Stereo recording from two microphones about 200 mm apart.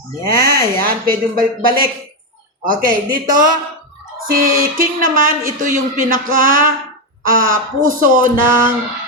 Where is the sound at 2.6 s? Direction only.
45° right (ahead or behind).